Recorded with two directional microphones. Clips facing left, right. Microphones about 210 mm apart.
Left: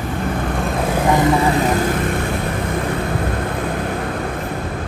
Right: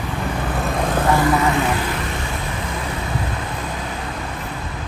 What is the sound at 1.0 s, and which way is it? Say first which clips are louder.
Vehicle: left 3 dB; 20° left (ahead or behind).